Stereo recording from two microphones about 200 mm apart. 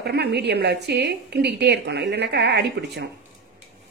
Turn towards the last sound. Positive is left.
turn(degrees=-60)  # may be behind; listen again after turning